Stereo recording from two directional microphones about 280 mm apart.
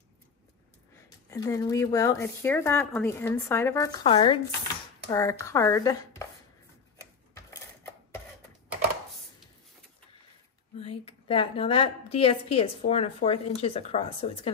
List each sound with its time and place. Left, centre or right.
1.3 s speech: centre
10.8 s a woman's voice: left